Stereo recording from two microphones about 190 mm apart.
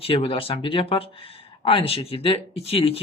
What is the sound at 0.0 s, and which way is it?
Speech, 30° left (ahead or behind).